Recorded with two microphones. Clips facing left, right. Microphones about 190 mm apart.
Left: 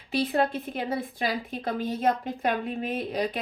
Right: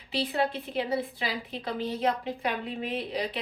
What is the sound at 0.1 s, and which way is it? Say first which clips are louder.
A woman's voice: left 3 dB; 45° left (ahead or behind).